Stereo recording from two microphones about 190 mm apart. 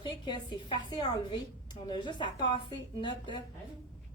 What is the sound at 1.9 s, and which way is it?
A woman's voice, 25° left (ahead or behind).